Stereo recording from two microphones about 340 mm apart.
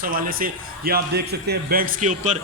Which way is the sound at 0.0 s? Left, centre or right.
Right.